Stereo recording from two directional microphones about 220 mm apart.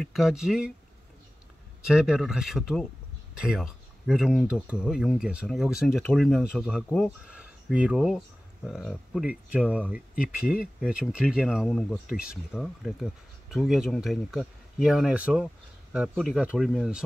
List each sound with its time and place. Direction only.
0.0 s speech: centre (ahead or behind)
1.9 s speech: 5° right (ahead or behind)